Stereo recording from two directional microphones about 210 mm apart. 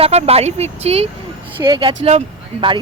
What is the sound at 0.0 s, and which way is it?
Speech, 30° right (ahead or behind).